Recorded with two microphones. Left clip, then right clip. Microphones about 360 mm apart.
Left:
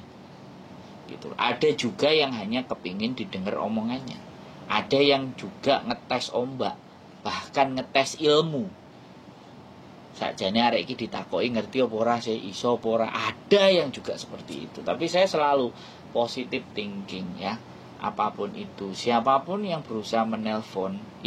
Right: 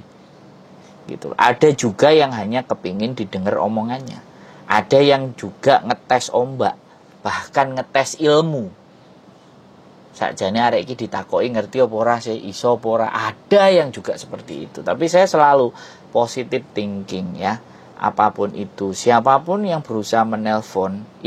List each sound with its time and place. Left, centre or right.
1.2 s speech: right
10.1 s speech: right
13.8 s speech: right